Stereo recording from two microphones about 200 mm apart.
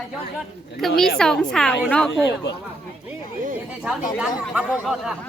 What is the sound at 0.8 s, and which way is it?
A woman's voice, centre (ahead or behind).